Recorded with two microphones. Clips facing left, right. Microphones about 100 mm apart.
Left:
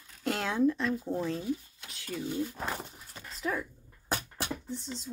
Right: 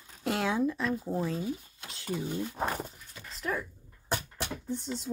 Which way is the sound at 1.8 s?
30° right (ahead or behind).